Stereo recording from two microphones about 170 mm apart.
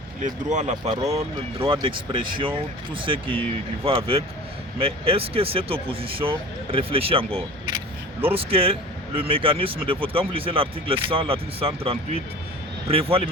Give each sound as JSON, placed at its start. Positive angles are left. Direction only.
{"t": 0.2, "sound": "speech", "side_deg": -45}
{"t": 1.5, "sound": "speech", "side_deg": -30}